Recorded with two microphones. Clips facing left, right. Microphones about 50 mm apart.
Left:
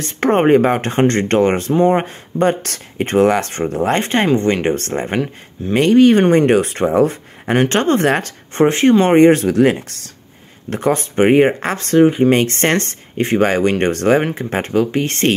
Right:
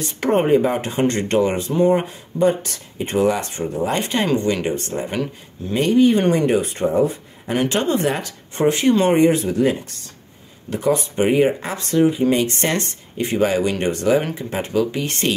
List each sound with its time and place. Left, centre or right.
0.0 s speech: left
1.7 s speech: left
2.3 s speech: left
4.6 s speech: left
5.7 s speech: left
6.3 s speech: left
9.1 s speech: left
10.7 s speech: left